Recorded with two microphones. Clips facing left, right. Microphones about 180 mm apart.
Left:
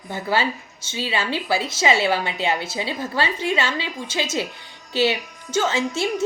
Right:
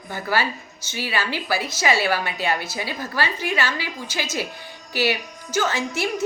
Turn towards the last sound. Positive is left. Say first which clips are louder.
# left 2 dB
turn(degrees=25)  # may be behind; listen again after turning